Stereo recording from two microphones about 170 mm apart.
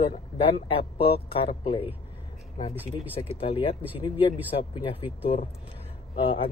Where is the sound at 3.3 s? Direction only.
35° left (ahead or behind).